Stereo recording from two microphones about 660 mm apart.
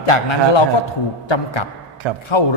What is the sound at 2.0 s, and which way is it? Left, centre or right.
Speech, right.